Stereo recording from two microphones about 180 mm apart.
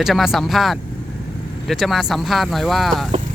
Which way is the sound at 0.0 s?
Centre (ahead or behind).